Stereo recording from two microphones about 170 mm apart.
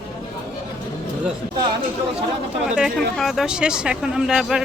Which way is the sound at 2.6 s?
Centre (ahead or behind).